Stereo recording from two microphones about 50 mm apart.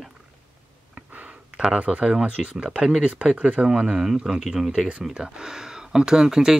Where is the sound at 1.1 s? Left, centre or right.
Right.